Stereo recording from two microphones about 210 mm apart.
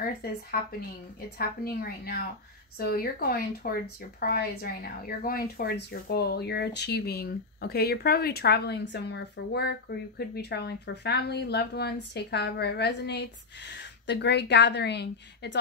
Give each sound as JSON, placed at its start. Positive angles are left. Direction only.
{"t": 0.0, "sound": "speech", "side_deg": 45}